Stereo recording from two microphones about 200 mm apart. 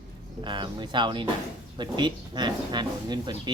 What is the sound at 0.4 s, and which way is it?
Speech, 20° right (ahead or behind).